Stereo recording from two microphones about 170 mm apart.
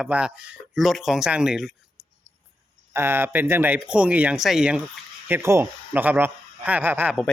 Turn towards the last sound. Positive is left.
turn(degrees=-10)  # may be behind; listen again after turning